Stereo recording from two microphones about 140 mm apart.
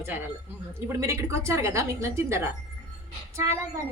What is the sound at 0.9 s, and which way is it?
A woman's voice, 20° right (ahead or behind).